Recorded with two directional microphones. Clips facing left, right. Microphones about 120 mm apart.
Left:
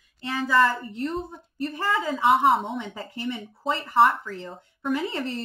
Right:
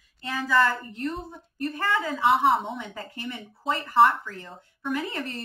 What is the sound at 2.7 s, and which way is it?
Speech, 20° left (ahead or behind).